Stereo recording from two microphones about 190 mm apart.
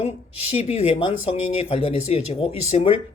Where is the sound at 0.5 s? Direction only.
35° left (ahead or behind).